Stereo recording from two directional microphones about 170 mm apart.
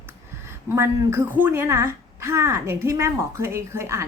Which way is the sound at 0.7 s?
15° right (ahead or behind).